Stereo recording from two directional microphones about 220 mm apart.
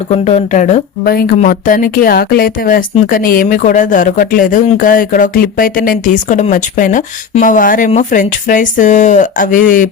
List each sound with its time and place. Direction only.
0.1 s speech: 30° left (ahead or behind)